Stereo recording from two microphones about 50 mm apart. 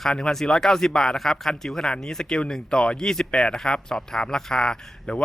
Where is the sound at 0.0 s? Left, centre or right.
Centre.